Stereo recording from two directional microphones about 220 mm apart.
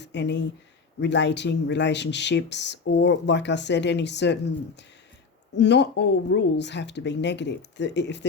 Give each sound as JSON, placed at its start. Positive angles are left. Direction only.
{"t": 0.0, "sound": "speech", "side_deg": 55}
{"t": 5.5, "sound": "speech", "side_deg": 50}